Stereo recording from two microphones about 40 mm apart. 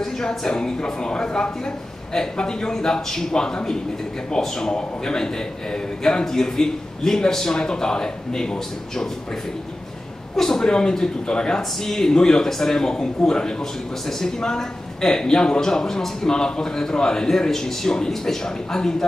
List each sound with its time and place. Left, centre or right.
0.0 s a man's voice: centre
10.3 s a man's voice: centre
11.8 s a man's voice: centre